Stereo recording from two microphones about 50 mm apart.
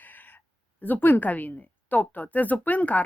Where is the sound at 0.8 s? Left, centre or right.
Left.